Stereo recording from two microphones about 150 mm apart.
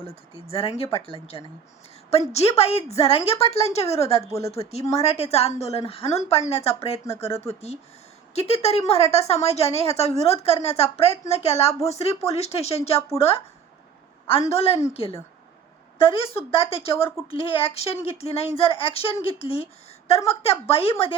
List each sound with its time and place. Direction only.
0.0 s speech: 40° left (ahead or behind)
2.0 s a woman's voice: 45° left (ahead or behind)
6.1 s speech: 20° left (ahead or behind)
6.5 s a woman's voice: 45° left (ahead or behind)
8.9 s a woman's voice: 45° left (ahead or behind)